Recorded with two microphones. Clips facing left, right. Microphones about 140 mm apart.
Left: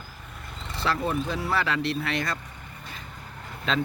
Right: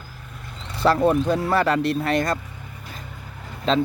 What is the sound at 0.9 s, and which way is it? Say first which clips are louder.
Speech: right 9 dB; 50° right (ahead or behind).